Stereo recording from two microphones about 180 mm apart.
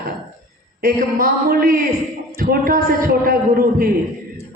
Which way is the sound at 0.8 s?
50° right (ahead or behind).